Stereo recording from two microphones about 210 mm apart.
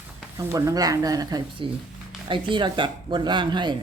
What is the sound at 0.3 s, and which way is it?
Speech, 15° right (ahead or behind).